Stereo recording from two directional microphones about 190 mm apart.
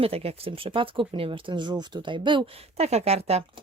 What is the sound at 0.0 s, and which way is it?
Speech, 30° right (ahead or behind).